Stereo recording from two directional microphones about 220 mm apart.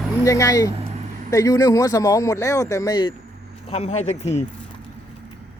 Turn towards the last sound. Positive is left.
turn(degrees=30)  # may be behind; listen again after turning